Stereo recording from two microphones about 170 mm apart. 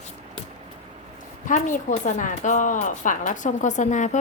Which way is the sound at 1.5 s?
50° left (ahead or behind).